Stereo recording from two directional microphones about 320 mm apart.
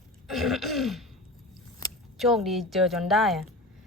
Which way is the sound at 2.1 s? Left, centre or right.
Centre.